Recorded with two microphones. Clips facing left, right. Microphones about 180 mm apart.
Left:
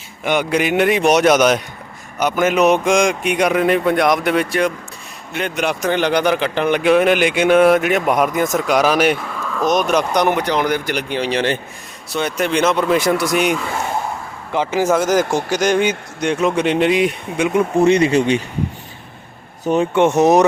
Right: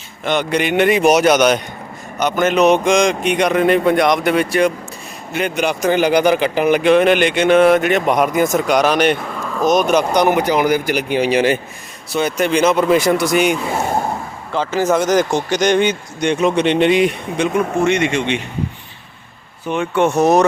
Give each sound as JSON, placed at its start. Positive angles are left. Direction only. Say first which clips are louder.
{"t": 0.3, "sound": "a man's voice", "louder": "even", "side_deg": 5}
{"t": 14.5, "sound": "a man's voice", "louder": "even", "side_deg": 15}
{"t": 17.8, "sound": "speech", "louder": "left 3 dB", "side_deg": 35}
{"t": 19.6, "sound": "speech", "louder": "left 4 dB", "side_deg": 40}
{"t": 19.9, "sound": "speech", "louder": "even", "side_deg": 20}